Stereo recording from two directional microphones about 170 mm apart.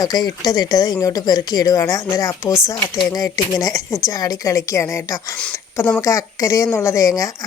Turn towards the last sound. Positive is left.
turn(degrees=20)  # may be behind; listen again after turning